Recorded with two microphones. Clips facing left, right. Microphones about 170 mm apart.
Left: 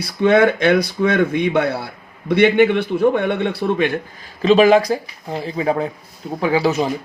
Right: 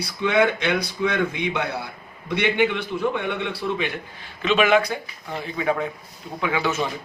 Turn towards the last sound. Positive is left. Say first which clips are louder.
# left 7 dB
turn(degrees=35)  # may be behind; listen again after turning